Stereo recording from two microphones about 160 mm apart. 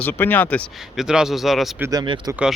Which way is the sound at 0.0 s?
10° left (ahead or behind).